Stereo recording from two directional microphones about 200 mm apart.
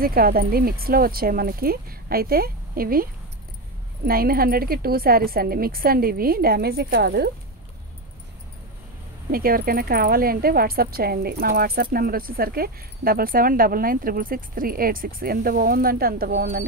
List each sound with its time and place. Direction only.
0.0 s speech: 50° right (ahead or behind)
9.3 s speech: 45° right (ahead or behind)